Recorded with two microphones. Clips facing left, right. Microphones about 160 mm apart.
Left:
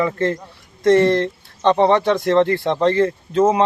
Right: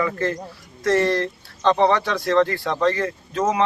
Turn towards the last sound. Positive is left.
turn(degrees=25)  # may be behind; listen again after turning